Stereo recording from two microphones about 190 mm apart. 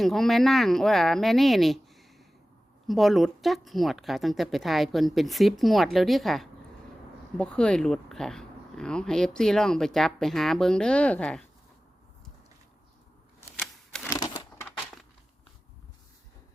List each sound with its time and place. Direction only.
0.0 s speech: centre (ahead or behind)
13.6 s typewriter: 5° left (ahead or behind)
14.1 s a sound: 20° left (ahead or behind)